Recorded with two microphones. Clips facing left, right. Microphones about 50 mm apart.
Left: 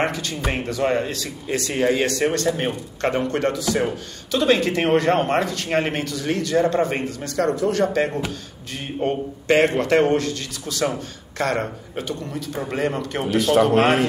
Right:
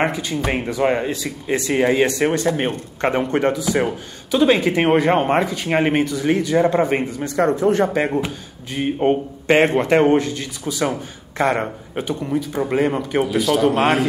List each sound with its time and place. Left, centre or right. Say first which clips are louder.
0.0 s a man's voice: right 3 dB; centre
13.3 s speech: left 3 dB; left